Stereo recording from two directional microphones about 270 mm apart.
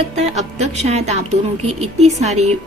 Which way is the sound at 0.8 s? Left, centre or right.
Right.